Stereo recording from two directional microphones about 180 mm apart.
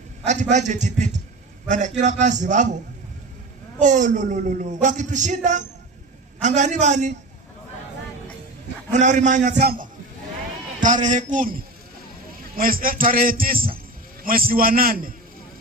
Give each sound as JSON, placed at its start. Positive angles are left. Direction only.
{"t": 0.3, "sound": "a man's voice", "side_deg": -40}
{"t": 3.8, "sound": "a man's voice", "side_deg": -45}
{"t": 8.9, "sound": "speech", "side_deg": -40}
{"t": 9.5, "sound": "a man's voice", "side_deg": -60}
{"t": 10.8, "sound": "speech", "side_deg": -45}
{"t": 12.5, "sound": "speech", "side_deg": -55}